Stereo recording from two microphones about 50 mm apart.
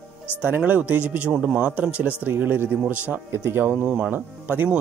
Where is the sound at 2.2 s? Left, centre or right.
Right.